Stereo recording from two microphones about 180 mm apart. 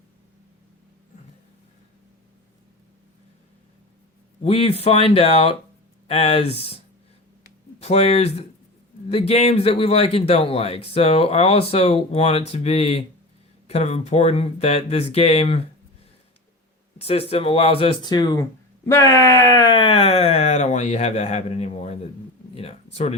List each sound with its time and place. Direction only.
4.4 s a man's voice: 35° left (ahead or behind)
17.0 s a man's voice: 35° left (ahead or behind)
22.5 s a sound: 35° left (ahead or behind)